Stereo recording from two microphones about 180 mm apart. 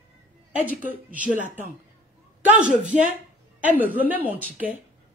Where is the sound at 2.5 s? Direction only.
5° right (ahead or behind).